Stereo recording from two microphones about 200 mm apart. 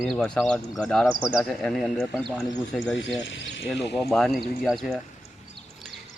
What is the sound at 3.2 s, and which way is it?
Speech, 65° left (ahead or behind).